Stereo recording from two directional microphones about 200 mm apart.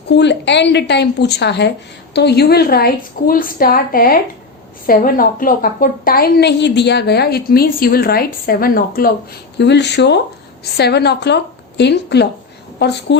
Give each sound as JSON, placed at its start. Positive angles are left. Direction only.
{"t": 0.1, "sound": "a woman's voice", "side_deg": 60}
{"t": 9.6, "sound": "speech", "side_deg": 60}